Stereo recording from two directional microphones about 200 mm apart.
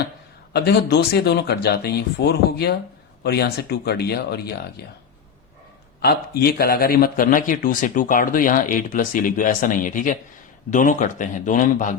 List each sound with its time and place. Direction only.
0.5 s speech: 55° left (ahead or behind)
6.0 s speech: 50° left (ahead or behind)